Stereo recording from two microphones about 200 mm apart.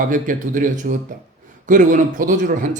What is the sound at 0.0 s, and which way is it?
Speech, 40° right (ahead or behind).